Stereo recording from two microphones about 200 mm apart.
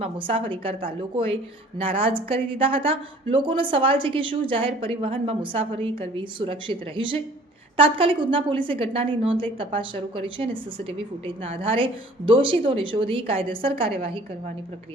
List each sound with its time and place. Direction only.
0.0 s a woman's voice: 25° right (ahead or behind)